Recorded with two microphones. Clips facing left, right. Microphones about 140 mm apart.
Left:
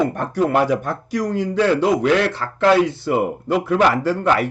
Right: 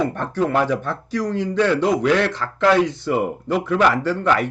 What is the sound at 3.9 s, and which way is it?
Speech, 10° left (ahead or behind).